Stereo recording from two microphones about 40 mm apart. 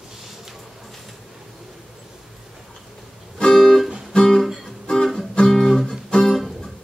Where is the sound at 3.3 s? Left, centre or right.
Centre.